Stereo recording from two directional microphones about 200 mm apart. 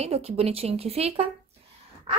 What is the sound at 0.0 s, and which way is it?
A woman's voice, 30° right (ahead or behind).